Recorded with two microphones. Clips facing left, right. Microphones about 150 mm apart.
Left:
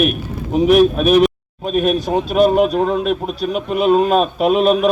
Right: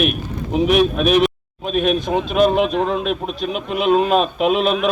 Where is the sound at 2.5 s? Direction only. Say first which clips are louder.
Left 3 dB; 45° left (ahead or behind).